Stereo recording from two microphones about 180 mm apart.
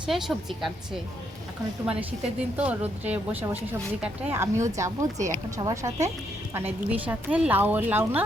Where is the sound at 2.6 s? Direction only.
10° right (ahead or behind).